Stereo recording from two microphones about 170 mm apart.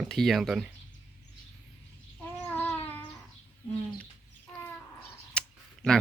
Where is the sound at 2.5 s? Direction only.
10° left (ahead or behind).